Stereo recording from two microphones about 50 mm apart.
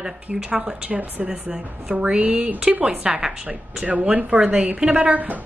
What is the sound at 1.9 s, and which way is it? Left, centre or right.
Speech, right.